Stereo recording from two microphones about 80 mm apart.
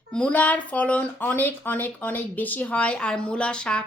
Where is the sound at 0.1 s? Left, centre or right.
Centre.